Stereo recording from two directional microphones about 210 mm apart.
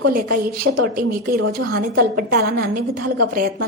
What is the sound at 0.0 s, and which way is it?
A woman's voice, 45° right (ahead or behind).